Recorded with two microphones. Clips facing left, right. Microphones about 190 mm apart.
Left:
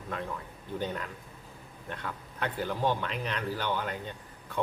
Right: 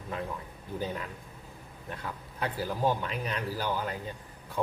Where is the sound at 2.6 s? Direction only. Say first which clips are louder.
Right 1 dB; 5° right (ahead or behind).